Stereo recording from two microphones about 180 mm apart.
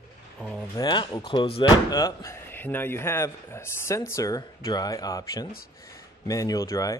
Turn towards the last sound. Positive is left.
turn(degrees=15)  # may be behind; listen again after turning